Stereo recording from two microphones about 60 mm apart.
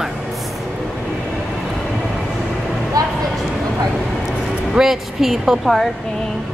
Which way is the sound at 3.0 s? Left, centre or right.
Right.